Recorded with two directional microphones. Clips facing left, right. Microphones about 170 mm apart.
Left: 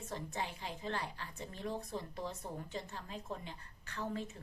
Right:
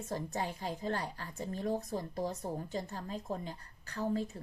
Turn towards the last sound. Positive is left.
turn(degrees=-35)  # may be behind; listen again after turning